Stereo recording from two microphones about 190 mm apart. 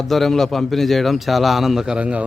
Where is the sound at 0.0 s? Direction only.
Centre (ahead or behind).